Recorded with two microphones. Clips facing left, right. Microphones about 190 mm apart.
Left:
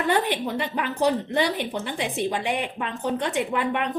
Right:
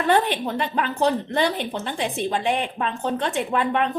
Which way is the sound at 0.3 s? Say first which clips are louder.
Right 1 dB; 15° left (ahead or behind).